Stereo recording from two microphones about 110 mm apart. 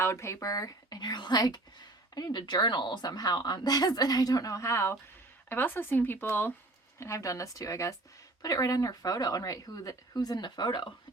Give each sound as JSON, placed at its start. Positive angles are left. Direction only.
{"t": 0.0, "sound": "speech", "side_deg": 25}